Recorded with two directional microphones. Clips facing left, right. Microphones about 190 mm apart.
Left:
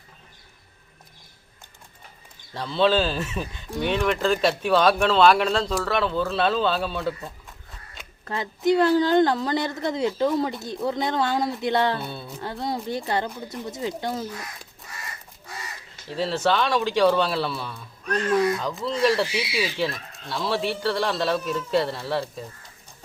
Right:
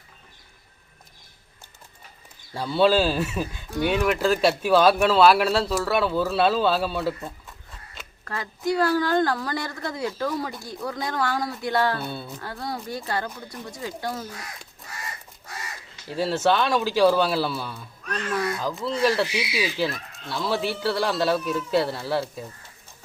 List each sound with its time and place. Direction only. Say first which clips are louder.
2.5 s speech: right 1 dB; 10° right (ahead or behind)
8.2 s a woman's voice: left 4 dB; 20° left (ahead or behind)
12.0 s speech: right 2 dB; centre (ahead or behind)
12.4 s a woman's voice: left 3 dB; 20° left (ahead or behind)
16.0 s speech: right 1 dB; 5° right (ahead or behind)